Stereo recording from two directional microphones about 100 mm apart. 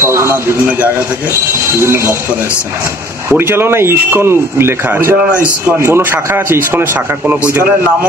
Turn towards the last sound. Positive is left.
turn(degrees=-20)  # may be behind; listen again after turning